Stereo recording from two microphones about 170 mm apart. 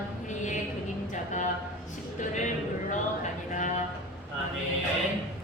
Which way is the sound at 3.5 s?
45° left (ahead or behind).